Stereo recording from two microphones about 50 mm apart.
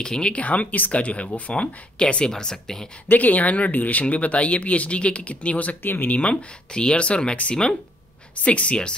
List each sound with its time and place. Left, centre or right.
0.0 s speech: centre
3.1 s speech: left
5.8 s speech: left
6.1 s speech: left